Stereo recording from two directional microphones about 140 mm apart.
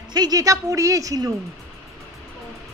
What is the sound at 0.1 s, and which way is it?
A woman's voice, 30° right (ahead or behind).